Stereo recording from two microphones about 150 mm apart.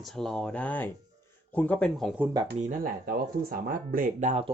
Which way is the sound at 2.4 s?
75° right (ahead or behind).